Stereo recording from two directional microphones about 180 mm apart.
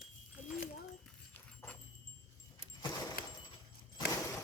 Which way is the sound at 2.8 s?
20° left (ahead or behind).